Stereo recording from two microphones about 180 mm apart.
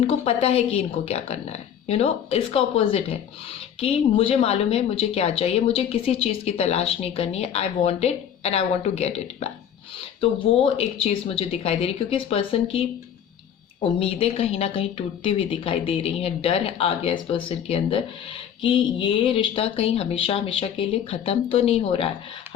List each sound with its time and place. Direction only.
0.0 s a woman's voice: 35° left (ahead or behind)
13.8 s a woman's voice: 30° left (ahead or behind)